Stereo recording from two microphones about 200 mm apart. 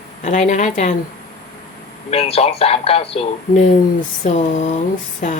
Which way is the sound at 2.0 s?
30° left (ahead or behind).